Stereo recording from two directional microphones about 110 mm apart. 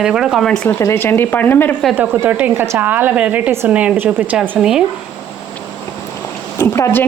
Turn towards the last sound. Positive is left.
turn(degrees=20)  # may be behind; listen again after turning